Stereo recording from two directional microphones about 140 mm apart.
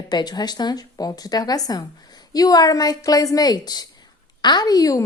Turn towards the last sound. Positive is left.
turn(degrees=25)  # may be behind; listen again after turning